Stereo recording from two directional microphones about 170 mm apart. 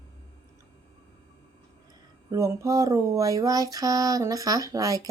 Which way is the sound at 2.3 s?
20° right (ahead or behind).